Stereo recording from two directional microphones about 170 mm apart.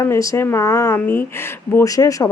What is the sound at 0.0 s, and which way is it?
Speech, 20° left (ahead or behind).